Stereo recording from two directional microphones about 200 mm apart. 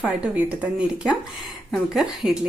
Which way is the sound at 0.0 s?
5° right (ahead or behind).